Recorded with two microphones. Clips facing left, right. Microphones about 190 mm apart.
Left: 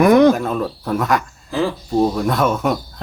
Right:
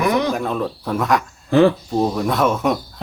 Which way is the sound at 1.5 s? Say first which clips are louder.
Right 7 dB; 65° right (ahead or behind).